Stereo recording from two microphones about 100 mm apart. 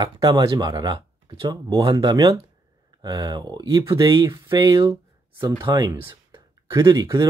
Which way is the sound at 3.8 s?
35° right (ahead or behind).